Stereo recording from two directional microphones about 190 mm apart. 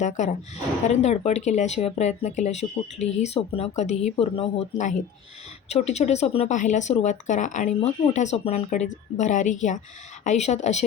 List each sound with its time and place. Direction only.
0.0 s speech: 40° left (ahead or behind)